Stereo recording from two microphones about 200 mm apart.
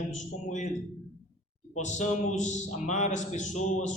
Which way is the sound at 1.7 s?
35° left (ahead or behind).